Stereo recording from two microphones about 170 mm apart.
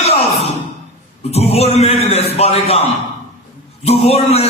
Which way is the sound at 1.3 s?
40° left (ahead or behind).